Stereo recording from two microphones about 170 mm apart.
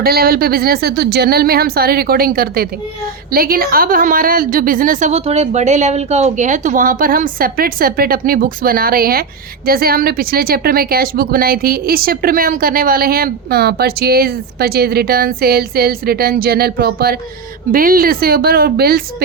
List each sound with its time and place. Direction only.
0.0 s a woman's voice: 65° right (ahead or behind)